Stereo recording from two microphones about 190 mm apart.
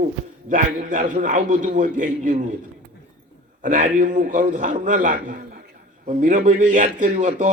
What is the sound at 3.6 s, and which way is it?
A man's voice, 45° right (ahead or behind).